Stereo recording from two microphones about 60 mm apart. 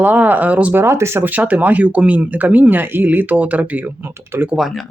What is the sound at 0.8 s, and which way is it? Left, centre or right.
Speech, right.